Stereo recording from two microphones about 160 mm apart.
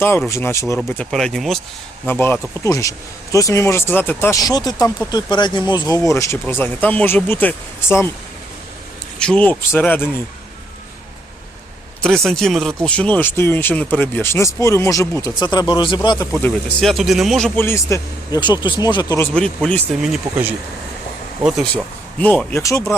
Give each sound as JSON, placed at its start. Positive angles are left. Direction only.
{"t": 0.3, "sound": "speech", "side_deg": 20}
{"t": 1.1, "sound": "speech", "side_deg": 5}
{"t": 9.1, "sound": "speech", "side_deg": 5}
{"t": 12.0, "sound": "speech", "side_deg": 0}
{"t": 16.4, "sound": "speech", "side_deg": 0}
{"t": 17.6, "sound": "speech", "side_deg": 15}
{"t": 19.2, "sound": "speech", "side_deg": 5}
{"t": 21.4, "sound": "speech", "side_deg": 0}
{"t": 22.2, "sound": "speech", "side_deg": 10}